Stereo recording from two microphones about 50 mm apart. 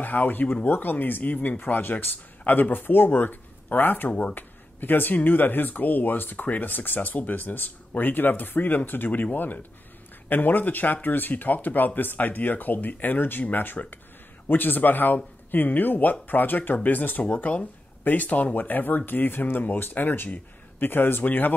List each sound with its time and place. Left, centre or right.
0.0 s speech: left